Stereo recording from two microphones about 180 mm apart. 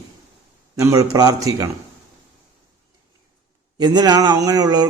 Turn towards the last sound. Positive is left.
turn(degrees=-20)  # may be behind; listen again after turning